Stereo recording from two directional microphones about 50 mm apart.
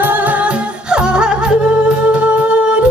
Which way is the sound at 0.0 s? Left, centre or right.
Right.